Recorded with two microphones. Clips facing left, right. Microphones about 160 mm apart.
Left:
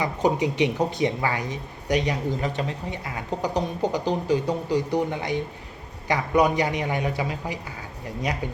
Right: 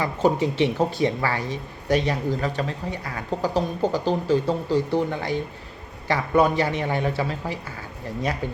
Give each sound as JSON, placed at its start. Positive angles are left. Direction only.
{"t": 0.0, "sound": "a man's voice", "side_deg": 15}